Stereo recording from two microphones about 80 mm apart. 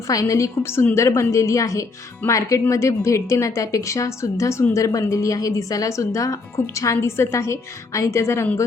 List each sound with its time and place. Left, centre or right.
0.1 s a woman's voice: left